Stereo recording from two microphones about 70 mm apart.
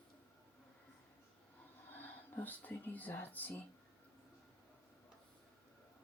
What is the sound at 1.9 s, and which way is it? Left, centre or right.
Speech, left.